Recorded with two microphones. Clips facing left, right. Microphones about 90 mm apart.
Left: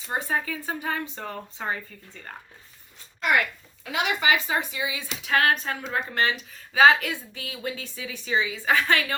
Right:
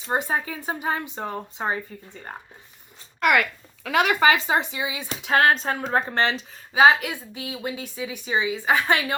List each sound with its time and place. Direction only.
0.2 s a woman's voice: 25° right (ahead or behind)
3.2 s speech: 70° right (ahead or behind)
3.9 s speech: 50° right (ahead or behind)
4.4 s a woman's voice: 25° right (ahead or behind)
6.7 s a woman's voice: 15° right (ahead or behind)